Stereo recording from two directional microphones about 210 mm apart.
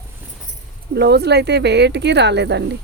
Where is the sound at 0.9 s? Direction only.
50° right (ahead or behind).